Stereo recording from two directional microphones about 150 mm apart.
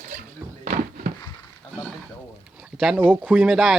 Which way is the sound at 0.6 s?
55° right (ahead or behind).